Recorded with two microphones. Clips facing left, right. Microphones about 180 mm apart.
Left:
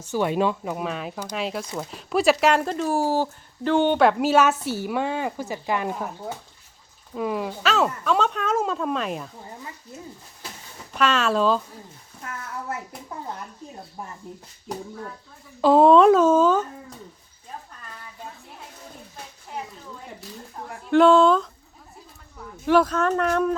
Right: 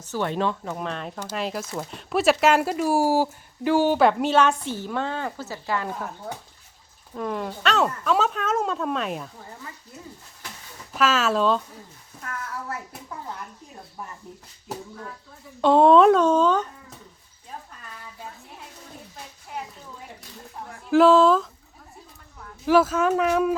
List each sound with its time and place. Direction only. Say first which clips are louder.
0.1 s speech: left 3 dB; 10° left (ahead or behind)
10.9 s speech: even; centre (ahead or behind)
14.0 s speech: left 1 dB; 25° left (ahead or behind)
14.7 s speech: left 2 dB; 5° right (ahead or behind)
20.9 s speech: even; centre (ahead or behind)
22.6 s speech: even; 5° right (ahead or behind)